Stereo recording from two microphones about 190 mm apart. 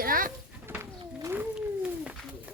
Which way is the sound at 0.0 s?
50° right (ahead or behind).